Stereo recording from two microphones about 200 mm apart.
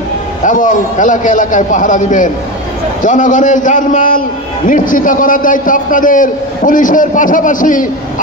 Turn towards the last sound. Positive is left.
turn(degrees=40)  # may be behind; listen again after turning